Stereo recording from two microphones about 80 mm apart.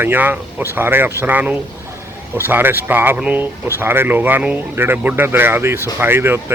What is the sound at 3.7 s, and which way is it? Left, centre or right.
Speech, right.